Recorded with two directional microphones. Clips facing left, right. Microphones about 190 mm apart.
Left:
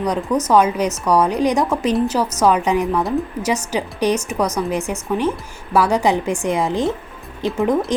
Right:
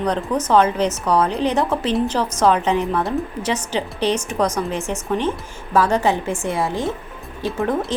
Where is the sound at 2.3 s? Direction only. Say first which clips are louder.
Even; 10° left (ahead or behind).